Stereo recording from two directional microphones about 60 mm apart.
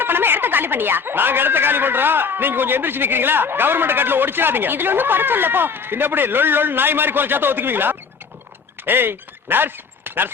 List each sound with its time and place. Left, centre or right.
0.0 s speech: right